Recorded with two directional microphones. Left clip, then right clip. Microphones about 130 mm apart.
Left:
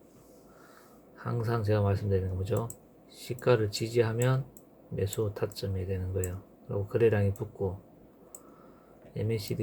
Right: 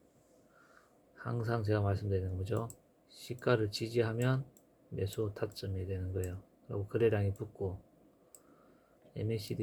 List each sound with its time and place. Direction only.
1.2 s speech: 20° right (ahead or behind)
9.1 s speech: 20° right (ahead or behind)